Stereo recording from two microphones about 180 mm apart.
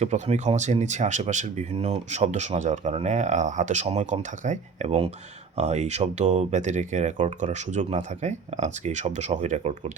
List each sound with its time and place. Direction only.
0.0 s speech: 40° right (ahead or behind)